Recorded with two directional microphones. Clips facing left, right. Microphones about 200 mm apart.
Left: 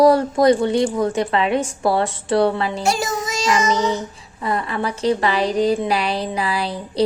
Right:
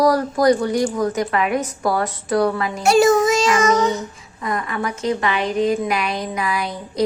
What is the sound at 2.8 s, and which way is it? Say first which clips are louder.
Child singing: right 13 dB; 60° right (ahead or behind).